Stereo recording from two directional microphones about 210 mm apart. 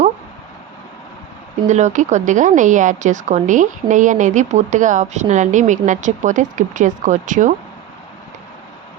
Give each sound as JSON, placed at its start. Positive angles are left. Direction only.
{"t": 1.6, "sound": "a woman's voice", "side_deg": -35}